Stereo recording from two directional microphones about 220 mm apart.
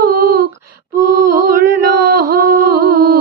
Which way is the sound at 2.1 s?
40° right (ahead or behind).